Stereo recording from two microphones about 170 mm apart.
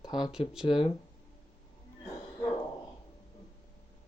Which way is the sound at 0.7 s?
30° left (ahead or behind).